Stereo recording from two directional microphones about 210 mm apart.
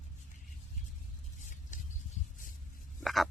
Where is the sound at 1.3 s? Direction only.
35° left (ahead or behind).